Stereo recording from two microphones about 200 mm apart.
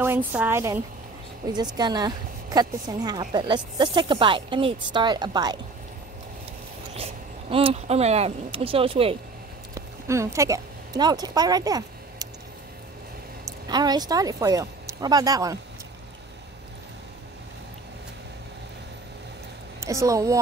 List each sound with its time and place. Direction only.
0.0 s a woman's voice: 10° right (ahead or behind)
6.9 s speech: 30° right (ahead or behind)
9.8 s speech: 15° right (ahead or behind)
13.7 s speech: 20° right (ahead or behind)
19.8 s a woman's voice: 15° right (ahead or behind)